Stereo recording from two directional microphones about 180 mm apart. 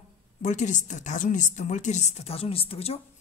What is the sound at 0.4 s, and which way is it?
A woman's voice, 40° left (ahead or behind).